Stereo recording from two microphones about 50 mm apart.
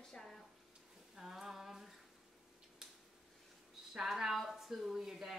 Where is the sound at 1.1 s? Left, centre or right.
Centre.